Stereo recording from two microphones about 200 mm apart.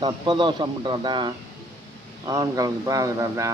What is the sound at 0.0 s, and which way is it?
Speech, 25° right (ahead or behind).